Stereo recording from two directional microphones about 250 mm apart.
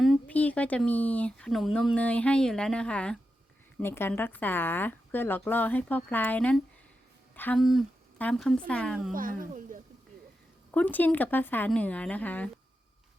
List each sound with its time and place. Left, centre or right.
0.0 s speech: centre
9.1 s speech: right
10.7 s speech: centre